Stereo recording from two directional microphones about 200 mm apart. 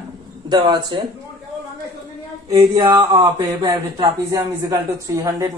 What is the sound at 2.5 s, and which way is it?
A woman's voice, 20° right (ahead or behind).